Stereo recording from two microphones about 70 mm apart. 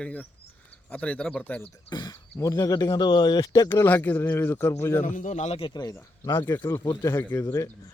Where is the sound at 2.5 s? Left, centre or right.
Left.